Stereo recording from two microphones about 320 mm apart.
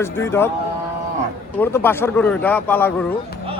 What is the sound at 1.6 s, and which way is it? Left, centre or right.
Speech, centre.